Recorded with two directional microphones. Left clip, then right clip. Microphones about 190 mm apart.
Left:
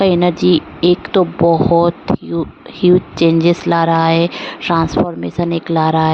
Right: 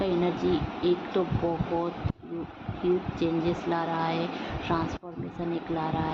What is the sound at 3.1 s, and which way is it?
Speech, 65° left (ahead or behind).